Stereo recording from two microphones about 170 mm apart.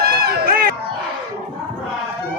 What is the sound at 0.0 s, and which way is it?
Run, 65° right (ahead or behind).